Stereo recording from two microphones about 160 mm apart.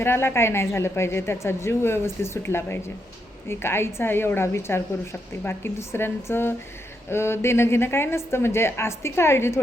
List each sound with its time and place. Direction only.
0.0 s a woman's voice: 15° left (ahead or behind)